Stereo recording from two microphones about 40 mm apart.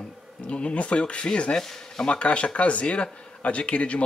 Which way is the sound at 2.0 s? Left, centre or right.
Left.